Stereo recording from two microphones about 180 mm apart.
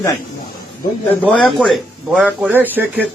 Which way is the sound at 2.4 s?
10° right (ahead or behind).